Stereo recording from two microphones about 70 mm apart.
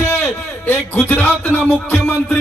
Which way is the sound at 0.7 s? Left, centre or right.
Left.